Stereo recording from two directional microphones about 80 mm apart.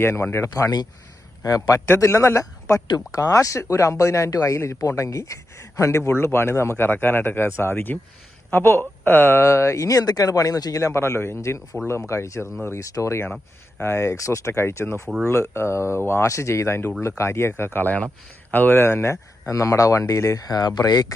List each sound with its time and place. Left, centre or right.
0.0 s speech: left
0.5 s a man's voice: left
2.0 s speech: left